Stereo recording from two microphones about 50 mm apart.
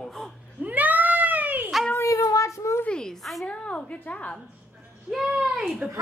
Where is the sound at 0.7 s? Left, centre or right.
Right.